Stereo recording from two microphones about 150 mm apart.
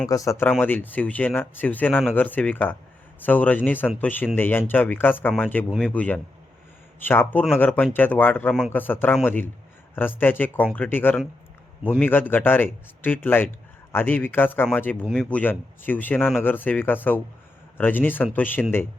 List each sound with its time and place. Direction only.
0.1 s speech: 20° left (ahead or behind)